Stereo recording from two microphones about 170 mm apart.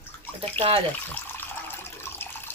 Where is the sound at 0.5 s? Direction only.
35° right (ahead or behind).